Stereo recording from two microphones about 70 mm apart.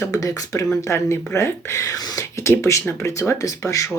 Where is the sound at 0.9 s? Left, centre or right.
Left.